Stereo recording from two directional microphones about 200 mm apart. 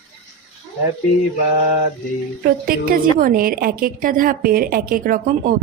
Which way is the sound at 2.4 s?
50° right (ahead or behind).